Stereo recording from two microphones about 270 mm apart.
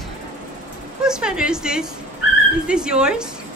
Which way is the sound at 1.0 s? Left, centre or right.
Centre.